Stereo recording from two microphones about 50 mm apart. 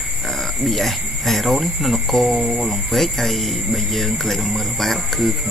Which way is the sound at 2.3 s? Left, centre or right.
Right.